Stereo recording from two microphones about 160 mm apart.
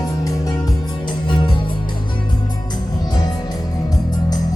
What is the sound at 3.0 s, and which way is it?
Music, 25° left (ahead or behind).